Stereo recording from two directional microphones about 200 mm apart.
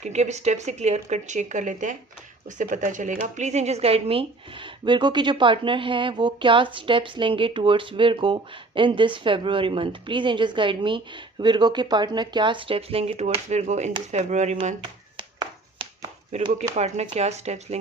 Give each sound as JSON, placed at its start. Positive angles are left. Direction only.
{"t": 0.0, "sound": "speech", "side_deg": -35}
{"t": 16.3, "sound": "speech", "side_deg": -35}